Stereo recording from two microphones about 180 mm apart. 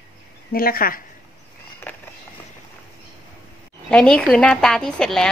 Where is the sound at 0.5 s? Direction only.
55° left (ahead or behind).